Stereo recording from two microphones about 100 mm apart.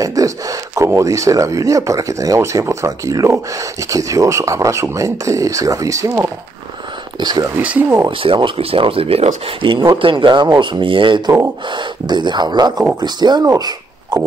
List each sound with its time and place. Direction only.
0.0 s speech: 35° right (ahead or behind)
7.2 s speech: 45° right (ahead or behind)
8.2 s speech: 60° right (ahead or behind)
10.0 s speech: 50° right (ahead or behind)